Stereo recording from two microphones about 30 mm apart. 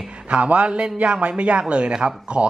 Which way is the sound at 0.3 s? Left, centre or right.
Right.